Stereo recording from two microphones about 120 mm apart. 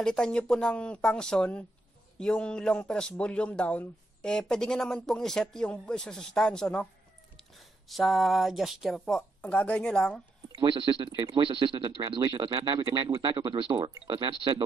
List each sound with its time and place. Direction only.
0.0 s speech: 5° left (ahead or behind)
9.4 s speech: 10° left (ahead or behind)
10.6 s speech: 45° right (ahead or behind)